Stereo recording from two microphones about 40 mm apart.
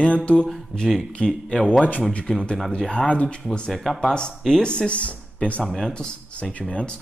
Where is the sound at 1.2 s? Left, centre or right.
Left.